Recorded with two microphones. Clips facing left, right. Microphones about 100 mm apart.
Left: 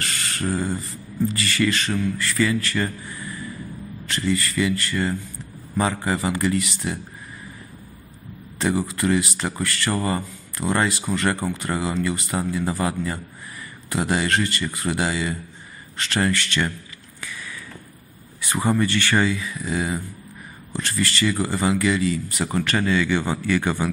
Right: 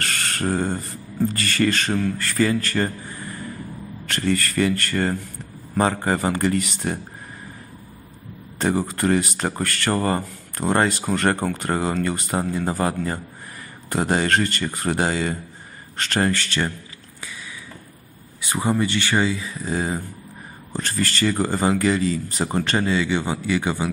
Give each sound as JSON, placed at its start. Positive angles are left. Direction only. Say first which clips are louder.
{"t": 0.0, "sound": "speech", "louder": "right 2 dB", "side_deg": -50}
{"t": 8.5, "sound": "speech", "louder": "right 1 dB", "side_deg": -45}
{"t": 17.2, "sound": "a sound", "louder": "left 1 dB", "side_deg": -20}
{"t": 18.6, "sound": "speech", "louder": "even", "side_deg": -10}
{"t": 18.9, "sound": "speech", "louder": "even", "side_deg": -20}